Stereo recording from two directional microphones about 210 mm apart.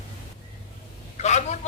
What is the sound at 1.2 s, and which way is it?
Speech, 35° left (ahead or behind).